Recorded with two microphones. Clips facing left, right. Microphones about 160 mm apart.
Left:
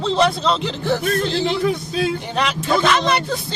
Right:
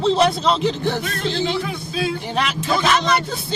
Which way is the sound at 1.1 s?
40° left (ahead or behind).